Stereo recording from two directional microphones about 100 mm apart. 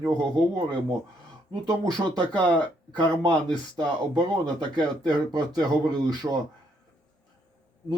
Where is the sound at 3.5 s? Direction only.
45° right (ahead or behind).